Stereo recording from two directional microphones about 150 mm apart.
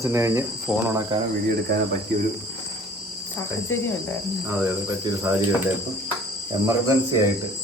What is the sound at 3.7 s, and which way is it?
Cricket, 15° left (ahead or behind).